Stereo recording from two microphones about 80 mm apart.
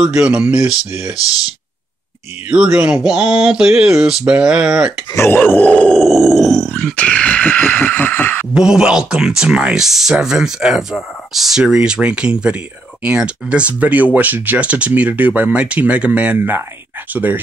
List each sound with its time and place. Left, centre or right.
0.2 s speech: centre
2.5 s speech: centre
5.1 s grunt: left
5.9 s groan: centre; by 8.5 s left
8.5 s speech: centre
16.3 s speech: right